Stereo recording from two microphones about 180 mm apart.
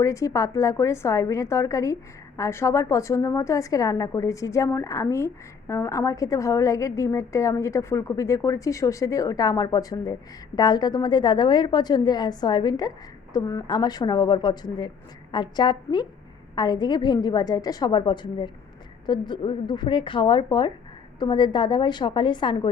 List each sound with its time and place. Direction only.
0.0 s a woman's voice: 15° left (ahead or behind)